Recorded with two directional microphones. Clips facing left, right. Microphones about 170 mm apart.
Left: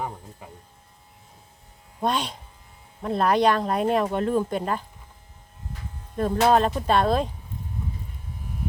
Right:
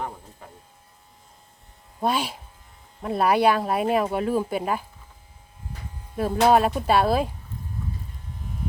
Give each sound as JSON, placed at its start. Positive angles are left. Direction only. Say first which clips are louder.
{"t": 0.0, "sound": "electric shaver", "louder": "left 1 dB", "side_deg": 5}
{"t": 2.0, "sound": "speech", "louder": "right 1 dB", "side_deg": -5}
{"t": 6.1, "sound": "speech", "louder": "right 1 dB", "side_deg": -5}
{"t": 7.8, "sound": "electric shaver", "louder": "right 1 dB", "side_deg": 20}